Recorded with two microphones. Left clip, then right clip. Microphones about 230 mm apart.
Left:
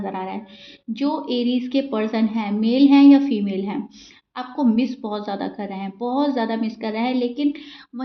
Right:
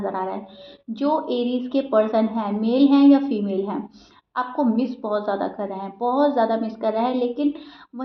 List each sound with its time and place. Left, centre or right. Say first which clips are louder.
0.0 s a woman's voice: right 2 dB; left